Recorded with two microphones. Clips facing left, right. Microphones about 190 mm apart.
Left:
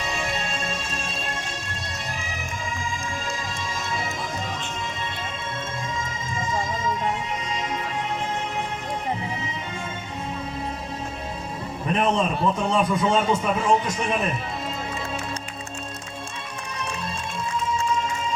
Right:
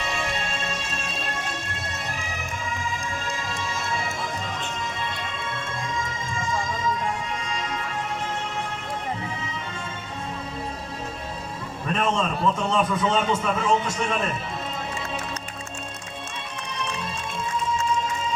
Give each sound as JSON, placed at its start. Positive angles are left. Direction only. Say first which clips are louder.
{"t": 6.3, "sound": "a sound", "louder": "left 1 dB", "side_deg": 20}
{"t": 7.4, "sound": "music", "louder": "left 2 dB", "side_deg": 20}
{"t": 11.9, "sound": "a man's voice", "louder": "left 2 dB", "side_deg": 15}